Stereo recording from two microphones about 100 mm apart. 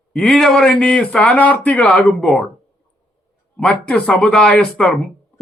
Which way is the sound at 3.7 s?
10° left (ahead or behind).